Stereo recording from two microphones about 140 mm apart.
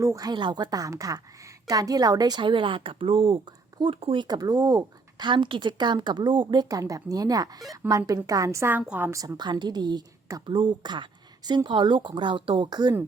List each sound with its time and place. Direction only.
0.0 s a woman's voice: 25° right (ahead or behind)